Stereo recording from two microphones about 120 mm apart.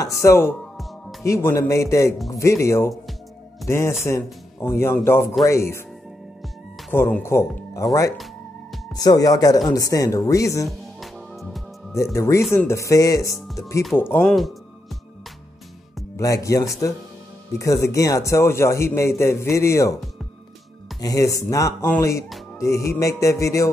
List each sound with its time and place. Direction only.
0.0 s a man's voice: 25° left (ahead or behind)
6.9 s a man's voice: 15° left (ahead or behind)
11.0 s music: centre (ahead or behind)
11.9 s a man's voice: 25° left (ahead or behind)
14.2 s speech: centre (ahead or behind)
16.2 s a man's voice: 25° left (ahead or behind)
21.0 s a man's voice: 30° left (ahead or behind)